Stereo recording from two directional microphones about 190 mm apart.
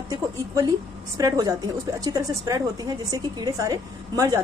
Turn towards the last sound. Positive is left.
turn(degrees=-20)  # may be behind; listen again after turning